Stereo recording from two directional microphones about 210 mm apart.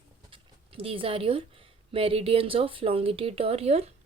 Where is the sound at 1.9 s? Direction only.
25° right (ahead or behind).